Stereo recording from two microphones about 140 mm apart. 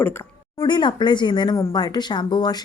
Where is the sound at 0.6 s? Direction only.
35° left (ahead or behind).